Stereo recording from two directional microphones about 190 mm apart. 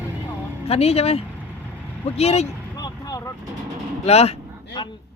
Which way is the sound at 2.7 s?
20° left (ahead or behind).